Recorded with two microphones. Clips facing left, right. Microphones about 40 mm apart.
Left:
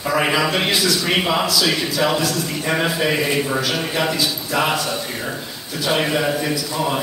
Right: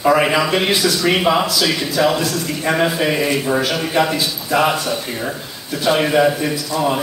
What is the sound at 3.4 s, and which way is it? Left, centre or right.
Speech, centre.